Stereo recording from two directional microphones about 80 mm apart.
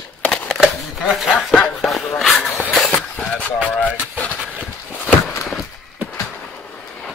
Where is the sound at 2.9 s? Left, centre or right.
Left.